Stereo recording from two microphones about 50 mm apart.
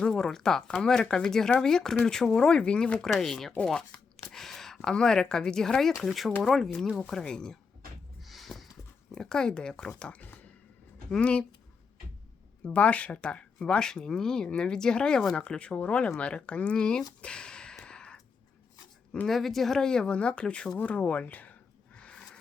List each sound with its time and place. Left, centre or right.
0.0 s speech: centre
3.1 s speech: centre
8.2 s a sound: centre
9.1 s speech: centre
11.1 s speech: left
12.6 s speech: left
17.7 s a sound: centre
19.3 s speech: centre; by 21.5 s left
21.9 s a sound: left